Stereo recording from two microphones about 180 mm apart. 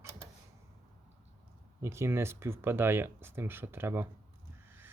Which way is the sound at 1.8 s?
15° right (ahead or behind).